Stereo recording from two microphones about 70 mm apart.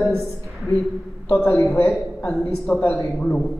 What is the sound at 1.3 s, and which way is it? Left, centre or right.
Speech, left.